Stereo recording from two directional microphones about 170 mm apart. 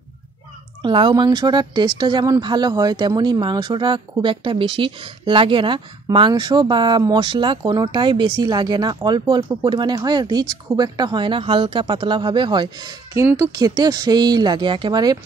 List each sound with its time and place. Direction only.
0.8 s speech: 30° right (ahead or behind)